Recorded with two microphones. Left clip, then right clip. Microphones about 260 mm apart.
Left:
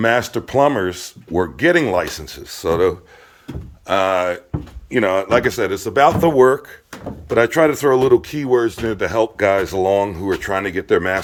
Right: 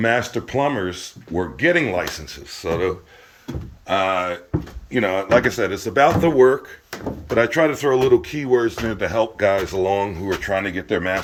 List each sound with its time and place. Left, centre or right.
0.0 s speech: centre